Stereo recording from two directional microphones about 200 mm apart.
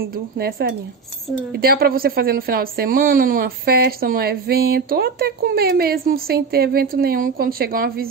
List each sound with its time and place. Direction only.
0.4 s speech: 50° right (ahead or behind)